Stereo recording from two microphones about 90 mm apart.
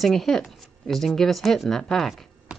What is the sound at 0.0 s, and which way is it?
A woman's voice, 5° left (ahead or behind).